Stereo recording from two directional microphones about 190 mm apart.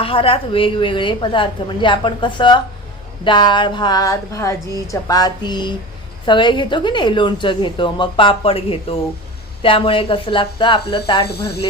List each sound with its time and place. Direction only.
0.0 s a woman's voice: 30° left (ahead or behind)